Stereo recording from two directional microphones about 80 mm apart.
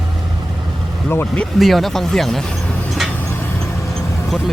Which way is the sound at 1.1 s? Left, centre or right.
Left.